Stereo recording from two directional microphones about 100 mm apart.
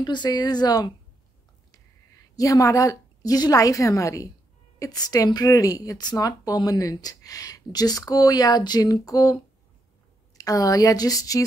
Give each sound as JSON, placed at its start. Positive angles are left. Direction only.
{"t": 0.0, "sound": "a woman's voice", "side_deg": 45}
{"t": 2.3, "sound": "a woman's voice", "side_deg": 35}